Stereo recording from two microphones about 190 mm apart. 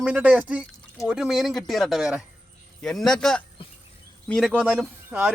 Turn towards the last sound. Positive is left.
turn(degrees=-5)  # may be behind; listen again after turning